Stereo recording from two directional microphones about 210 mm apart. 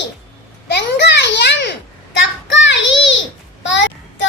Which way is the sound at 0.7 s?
55° left (ahead or behind).